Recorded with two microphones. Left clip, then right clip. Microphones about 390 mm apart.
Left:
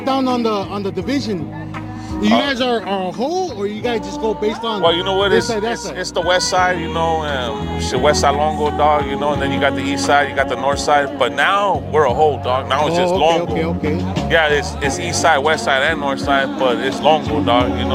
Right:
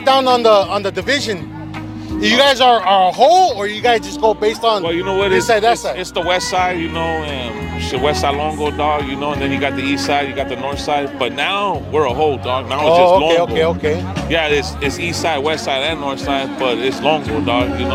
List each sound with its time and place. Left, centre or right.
0.0 s a man's voice: right
6.1 s a man's voice: centre
13.4 s a man's voice: right
14.3 s a man's voice: left